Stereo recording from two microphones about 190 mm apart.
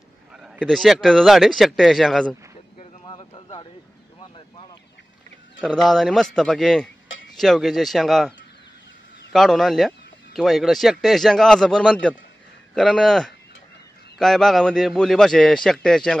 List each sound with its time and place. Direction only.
0.3 s speech: centre (ahead or behind)
3.1 s a sound: 25° left (ahead or behind)
5.6 s speech: centre (ahead or behind)